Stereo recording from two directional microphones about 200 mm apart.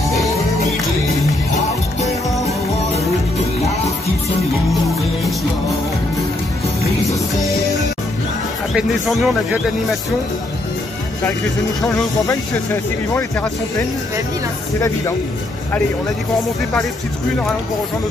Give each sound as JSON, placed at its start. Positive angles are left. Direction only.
{"t": 8.7, "sound": "speech", "side_deg": 0}
{"t": 13.1, "sound": "speech", "side_deg": 15}